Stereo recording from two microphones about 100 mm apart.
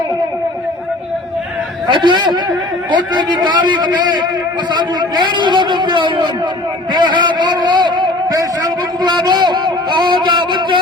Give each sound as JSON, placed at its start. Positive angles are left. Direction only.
{"t": 1.9, "sound": "speech", "side_deg": -50}